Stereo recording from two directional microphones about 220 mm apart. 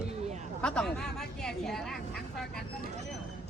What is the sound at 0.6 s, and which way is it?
Speech, 5° left (ahead or behind).